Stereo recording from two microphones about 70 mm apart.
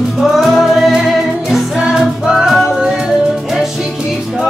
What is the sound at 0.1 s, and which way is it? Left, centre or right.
Music, centre.